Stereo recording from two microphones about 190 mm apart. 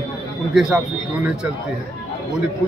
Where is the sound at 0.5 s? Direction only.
5° right (ahead or behind).